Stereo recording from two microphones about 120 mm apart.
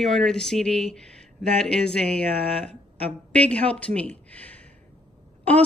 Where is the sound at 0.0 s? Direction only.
5° left (ahead or behind).